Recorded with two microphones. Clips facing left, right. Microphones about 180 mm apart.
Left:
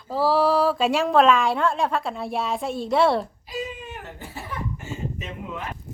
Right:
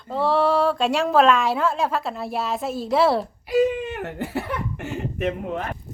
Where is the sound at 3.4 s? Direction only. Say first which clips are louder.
Right 12 dB; 65° right (ahead or behind); by 5.7 s 50° right (ahead or behind).